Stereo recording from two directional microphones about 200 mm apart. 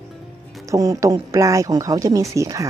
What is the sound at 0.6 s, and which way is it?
Speech, 15° right (ahead or behind).